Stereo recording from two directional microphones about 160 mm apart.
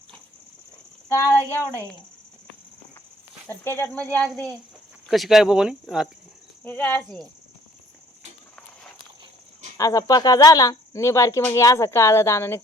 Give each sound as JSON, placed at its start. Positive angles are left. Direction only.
{"t": 1.0, "sound": "speech", "side_deg": 15}
{"t": 3.4, "sound": "speech", "side_deg": 15}
{"t": 6.7, "sound": "speech", "side_deg": 10}
{"t": 9.7, "sound": "speech", "side_deg": 20}